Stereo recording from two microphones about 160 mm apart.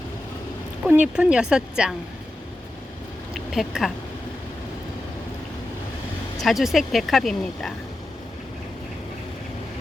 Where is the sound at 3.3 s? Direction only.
Centre (ahead or behind).